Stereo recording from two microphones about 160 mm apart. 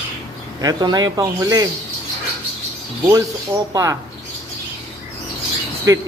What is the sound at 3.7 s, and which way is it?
Speech, 20° right (ahead or behind).